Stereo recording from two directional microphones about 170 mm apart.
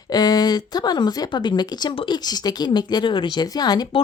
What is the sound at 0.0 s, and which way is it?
Speech, 25° left (ahead or behind).